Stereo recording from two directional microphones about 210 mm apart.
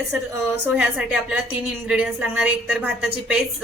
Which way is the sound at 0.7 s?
5° right (ahead or behind).